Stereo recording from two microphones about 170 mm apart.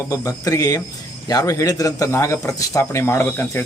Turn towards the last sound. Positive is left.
turn(degrees=15)  # may be behind; listen again after turning